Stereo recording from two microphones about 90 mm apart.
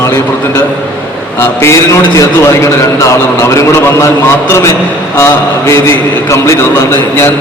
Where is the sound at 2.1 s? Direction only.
35° left (ahead or behind).